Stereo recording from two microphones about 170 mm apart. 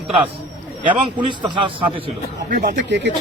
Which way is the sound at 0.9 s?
30° right (ahead or behind).